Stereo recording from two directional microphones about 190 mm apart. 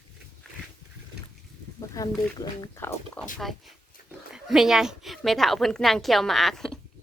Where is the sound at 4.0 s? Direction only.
50° left (ahead or behind).